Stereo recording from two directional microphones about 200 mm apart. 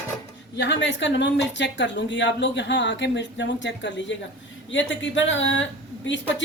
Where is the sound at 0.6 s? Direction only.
65° left (ahead or behind).